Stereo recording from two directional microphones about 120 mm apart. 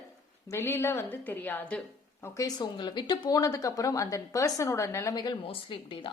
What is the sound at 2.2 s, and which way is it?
Speech, 30° left (ahead or behind).